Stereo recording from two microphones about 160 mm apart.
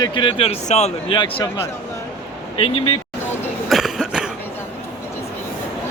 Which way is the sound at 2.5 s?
35° left (ahead or behind).